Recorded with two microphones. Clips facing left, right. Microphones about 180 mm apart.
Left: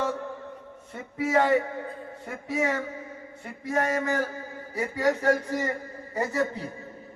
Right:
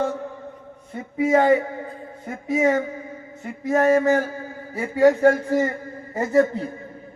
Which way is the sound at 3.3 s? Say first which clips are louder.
Right 7 dB; 45° right (ahead or behind).